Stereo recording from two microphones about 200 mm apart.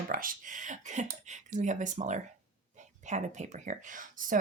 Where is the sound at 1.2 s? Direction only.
35° right (ahead or behind).